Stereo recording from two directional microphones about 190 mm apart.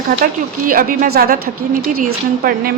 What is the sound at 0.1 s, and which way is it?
A woman's voice, 50° right (ahead or behind).